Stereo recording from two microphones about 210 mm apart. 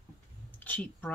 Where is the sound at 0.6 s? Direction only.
5° left (ahead or behind).